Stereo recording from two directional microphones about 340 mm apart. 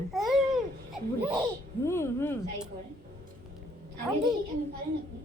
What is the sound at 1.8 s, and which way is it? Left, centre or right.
Speech, centre.